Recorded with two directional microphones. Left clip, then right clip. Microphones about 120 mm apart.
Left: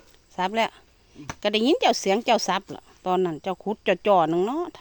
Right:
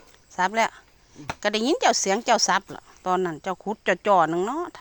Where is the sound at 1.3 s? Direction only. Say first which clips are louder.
Left 2 dB; 45° left (ahead or behind).